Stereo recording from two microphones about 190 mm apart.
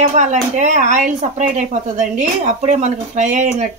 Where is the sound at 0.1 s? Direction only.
40° right (ahead or behind).